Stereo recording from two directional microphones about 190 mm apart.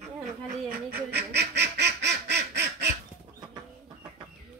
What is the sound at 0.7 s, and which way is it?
Duck, 50° right (ahead or behind).